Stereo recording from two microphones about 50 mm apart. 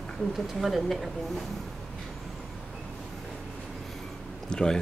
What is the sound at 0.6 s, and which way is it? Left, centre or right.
Speech, centre.